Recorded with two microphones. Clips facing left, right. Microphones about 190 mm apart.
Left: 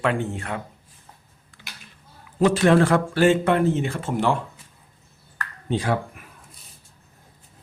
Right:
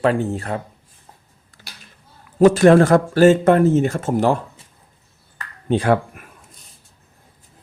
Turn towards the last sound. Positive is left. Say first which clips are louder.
# right 7 dB
turn(degrees=-60)  # may be behind; listen again after turning